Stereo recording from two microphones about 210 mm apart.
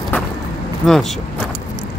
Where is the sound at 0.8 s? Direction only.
Centre (ahead or behind).